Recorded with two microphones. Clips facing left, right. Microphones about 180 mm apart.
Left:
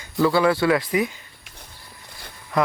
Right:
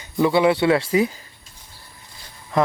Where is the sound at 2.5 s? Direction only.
25° right (ahead or behind).